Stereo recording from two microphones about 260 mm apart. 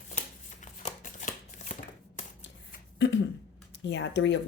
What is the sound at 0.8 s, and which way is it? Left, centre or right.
Shuffling cards, left.